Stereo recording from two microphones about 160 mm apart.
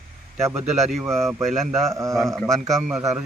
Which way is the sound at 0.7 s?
45° right (ahead or behind).